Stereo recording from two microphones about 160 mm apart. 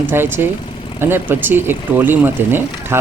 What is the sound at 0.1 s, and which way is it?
Speech, 15° right (ahead or behind).